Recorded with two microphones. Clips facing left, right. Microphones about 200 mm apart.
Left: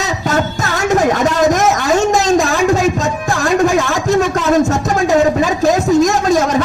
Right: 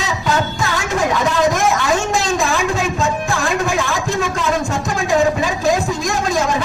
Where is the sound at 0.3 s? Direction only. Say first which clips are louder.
Left 2 dB; 45° left (ahead or behind).